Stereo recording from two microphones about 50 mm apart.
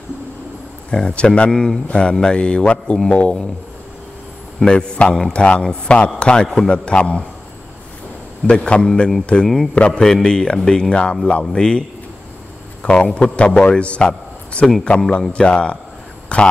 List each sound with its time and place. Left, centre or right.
0.8 s speech: centre
4.6 s speech: centre
8.5 s a man's voice: left
12.8 s speech: left
16.3 s a sound: left